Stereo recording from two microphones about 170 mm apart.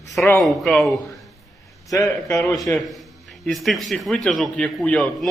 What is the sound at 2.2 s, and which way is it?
Speech, 15° left (ahead or behind).